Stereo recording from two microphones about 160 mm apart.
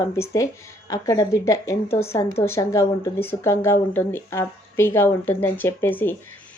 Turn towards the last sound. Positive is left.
turn(degrees=15)  # may be behind; listen again after turning